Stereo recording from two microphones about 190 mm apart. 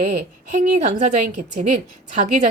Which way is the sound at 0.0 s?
45° right (ahead or behind).